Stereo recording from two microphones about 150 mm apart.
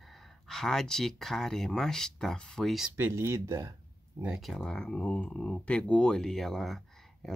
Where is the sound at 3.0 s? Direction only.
15° right (ahead or behind).